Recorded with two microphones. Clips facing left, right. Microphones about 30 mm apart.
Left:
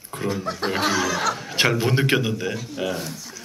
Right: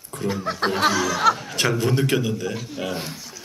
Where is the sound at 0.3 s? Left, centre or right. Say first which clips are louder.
Right 2 dB; centre.